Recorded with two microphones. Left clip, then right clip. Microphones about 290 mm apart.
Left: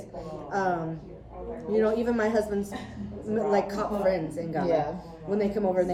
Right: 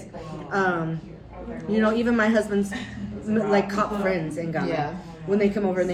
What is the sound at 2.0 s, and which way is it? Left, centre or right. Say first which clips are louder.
Speech: right 4 dB; right.